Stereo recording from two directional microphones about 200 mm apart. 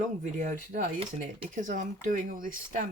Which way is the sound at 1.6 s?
40° right (ahead or behind).